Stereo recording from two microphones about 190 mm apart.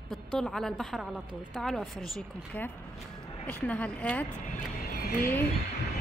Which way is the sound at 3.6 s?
5° left (ahead or behind).